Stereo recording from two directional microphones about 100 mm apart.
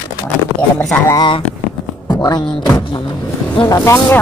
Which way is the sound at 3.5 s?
40° left (ahead or behind).